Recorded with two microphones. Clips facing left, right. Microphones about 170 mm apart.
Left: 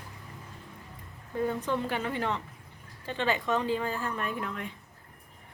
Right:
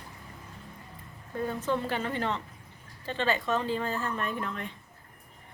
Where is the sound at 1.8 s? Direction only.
10° left (ahead or behind).